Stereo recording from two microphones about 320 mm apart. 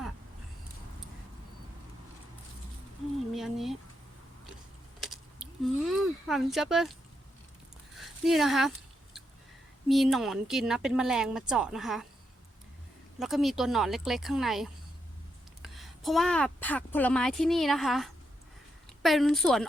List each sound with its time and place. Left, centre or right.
3.3 s speech: centre
4.9 s a sound: centre
7.9 s speech: centre
9.9 s speech: centre
13.1 s speech: centre